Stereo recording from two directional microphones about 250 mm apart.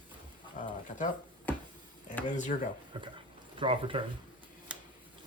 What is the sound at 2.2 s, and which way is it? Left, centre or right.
Speech, left.